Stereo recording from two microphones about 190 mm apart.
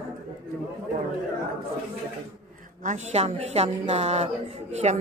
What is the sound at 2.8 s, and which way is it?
A woman's voice, 40° right (ahead or behind).